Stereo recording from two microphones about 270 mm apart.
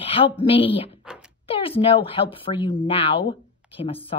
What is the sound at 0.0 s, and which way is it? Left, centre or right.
A woman's voice, centre.